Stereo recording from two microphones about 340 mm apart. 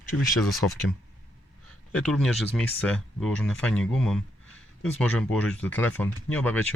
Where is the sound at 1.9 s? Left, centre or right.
Centre.